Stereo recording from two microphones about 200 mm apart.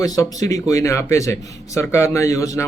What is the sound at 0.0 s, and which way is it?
A man's voice, 15° left (ahead or behind).